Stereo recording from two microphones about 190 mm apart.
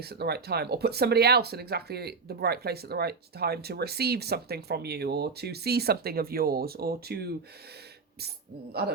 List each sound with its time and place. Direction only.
0.0 s speech: 55° right (ahead or behind)